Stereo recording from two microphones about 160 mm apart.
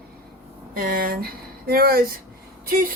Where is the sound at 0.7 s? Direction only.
65° right (ahead or behind).